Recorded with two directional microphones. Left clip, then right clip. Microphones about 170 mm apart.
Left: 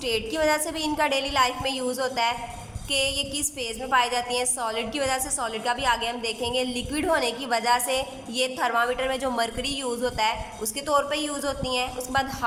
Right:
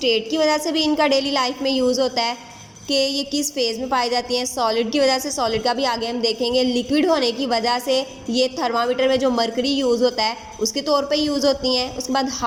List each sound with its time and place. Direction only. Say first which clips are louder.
0.0 s a woman's voice: right 6 dB; 15° right (ahead or behind)